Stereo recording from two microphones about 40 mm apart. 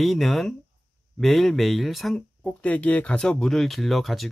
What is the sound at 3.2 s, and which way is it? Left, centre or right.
Speech, left.